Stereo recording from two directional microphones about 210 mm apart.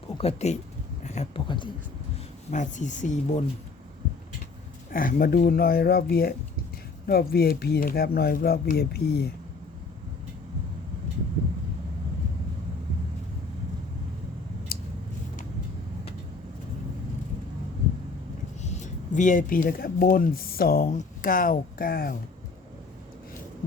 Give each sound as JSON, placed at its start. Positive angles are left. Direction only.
{"t": 0.2, "sound": "speech", "side_deg": 30}
{"t": 2.5, "sound": "speech", "side_deg": 35}
{"t": 4.9, "sound": "speech", "side_deg": 40}
{"t": 18.6, "sound": "speech", "side_deg": 35}